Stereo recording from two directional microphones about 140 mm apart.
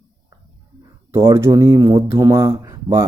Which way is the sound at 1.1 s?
20° right (ahead or behind).